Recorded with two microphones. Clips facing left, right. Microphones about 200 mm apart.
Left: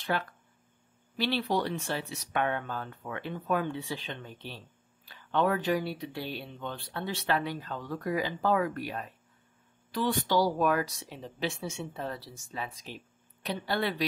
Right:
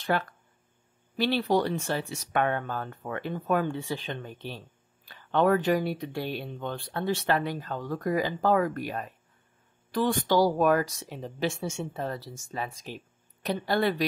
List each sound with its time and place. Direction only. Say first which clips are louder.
1.1 s speech: right 4 dB; 45° right (ahead or behind)